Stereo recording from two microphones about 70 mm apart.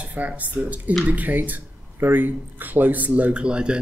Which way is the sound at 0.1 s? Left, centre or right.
Right.